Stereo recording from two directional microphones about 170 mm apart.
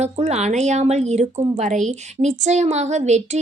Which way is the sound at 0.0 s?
40° right (ahead or behind).